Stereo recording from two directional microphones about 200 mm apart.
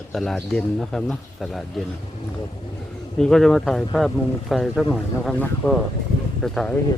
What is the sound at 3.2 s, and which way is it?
Speech, centre (ahead or behind).